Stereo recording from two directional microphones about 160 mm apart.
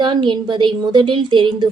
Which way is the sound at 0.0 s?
30° right (ahead or behind).